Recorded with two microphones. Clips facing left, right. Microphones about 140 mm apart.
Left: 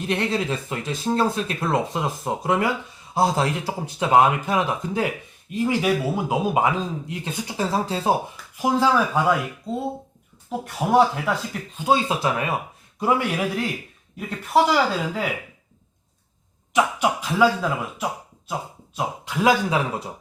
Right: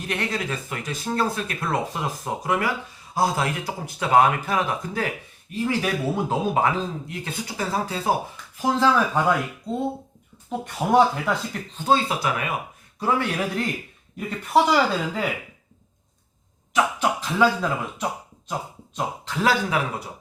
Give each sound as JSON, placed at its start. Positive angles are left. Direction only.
{"t": 0.1, "sound": "a man's voice", "side_deg": 25}
{"t": 8.5, "sound": "a man's voice", "side_deg": 10}
{"t": 10.7, "sound": "speech", "side_deg": 0}
{"t": 12.2, "sound": "speech", "side_deg": 30}
{"t": 13.0, "sound": "a man's voice", "side_deg": 15}
{"t": 14.2, "sound": "speech", "side_deg": 0}
{"t": 16.7, "sound": "a man's voice", "side_deg": 10}